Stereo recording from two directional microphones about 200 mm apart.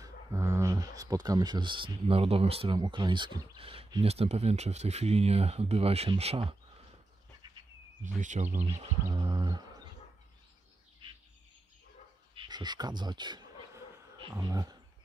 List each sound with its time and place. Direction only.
0.0 s speech: 15° right (ahead or behind)
8.0 s speech: 40° right (ahead or behind)
9.0 s speech: 20° right (ahead or behind)
12.4 s speech: 20° right (ahead or behind)